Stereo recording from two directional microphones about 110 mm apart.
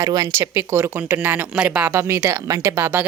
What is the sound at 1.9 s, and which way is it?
Speech, 25° right (ahead or behind).